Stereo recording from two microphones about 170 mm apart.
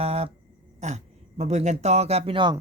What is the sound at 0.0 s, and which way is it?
Speech, 35° right (ahead or behind).